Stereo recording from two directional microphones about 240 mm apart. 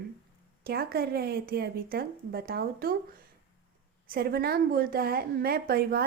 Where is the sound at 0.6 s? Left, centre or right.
Right.